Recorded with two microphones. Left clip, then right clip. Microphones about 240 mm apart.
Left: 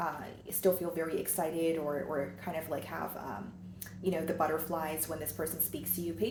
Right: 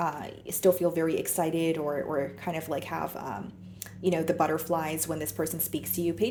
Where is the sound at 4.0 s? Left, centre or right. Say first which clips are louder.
Right 6 dB; right.